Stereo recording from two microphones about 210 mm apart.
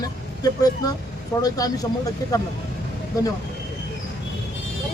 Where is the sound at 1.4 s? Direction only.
20° left (ahead or behind).